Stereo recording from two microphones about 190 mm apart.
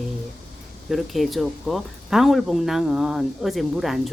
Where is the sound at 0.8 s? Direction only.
Centre (ahead or behind).